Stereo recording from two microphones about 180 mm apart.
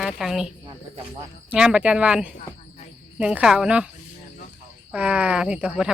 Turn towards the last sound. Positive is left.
turn(degrees=-5)  # may be behind; listen again after turning